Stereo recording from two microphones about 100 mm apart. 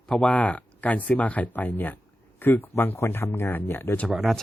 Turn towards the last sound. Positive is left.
turn(degrees=0)  # may be behind; listen again after turning